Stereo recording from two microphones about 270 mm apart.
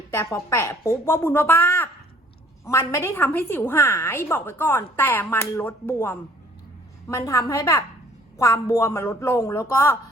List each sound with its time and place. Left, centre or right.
0.1 s a woman's voice: centre